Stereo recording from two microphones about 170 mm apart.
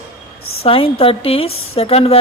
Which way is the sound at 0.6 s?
35° left (ahead or behind).